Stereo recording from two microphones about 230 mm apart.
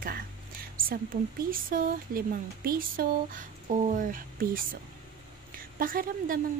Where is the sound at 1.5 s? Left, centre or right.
Right.